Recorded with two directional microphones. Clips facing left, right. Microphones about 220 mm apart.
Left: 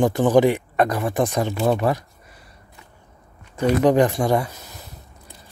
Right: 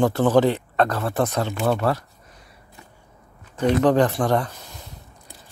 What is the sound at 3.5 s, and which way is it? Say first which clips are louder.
Speech: left 1 dB; 10° left (ahead or behind).